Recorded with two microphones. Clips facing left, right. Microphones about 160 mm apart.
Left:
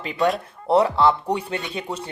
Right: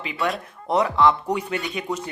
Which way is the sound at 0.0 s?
40° left (ahead or behind).